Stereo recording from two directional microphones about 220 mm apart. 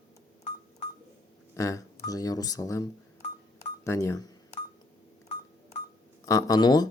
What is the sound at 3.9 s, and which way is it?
Speech, 15° left (ahead or behind).